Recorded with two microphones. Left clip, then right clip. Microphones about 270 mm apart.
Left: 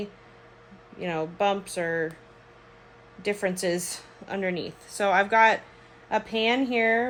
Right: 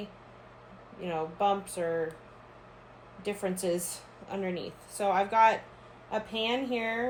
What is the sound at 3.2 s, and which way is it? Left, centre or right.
A woman's voice, left.